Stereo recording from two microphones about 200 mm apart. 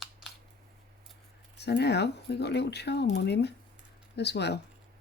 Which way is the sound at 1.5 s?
55° left (ahead or behind).